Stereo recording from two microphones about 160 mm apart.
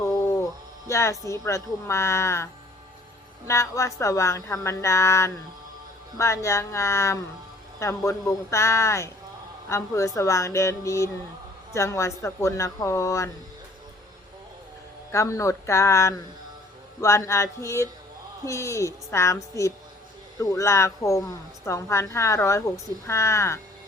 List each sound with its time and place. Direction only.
0.0 s a sound: 15° left (ahead or behind)
0.9 s a woman's voice: 20° left (ahead or behind)
15.1 s a woman's voice: 20° left (ahead or behind)